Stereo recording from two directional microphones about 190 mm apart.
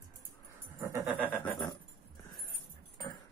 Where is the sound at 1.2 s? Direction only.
5° left (ahead or behind).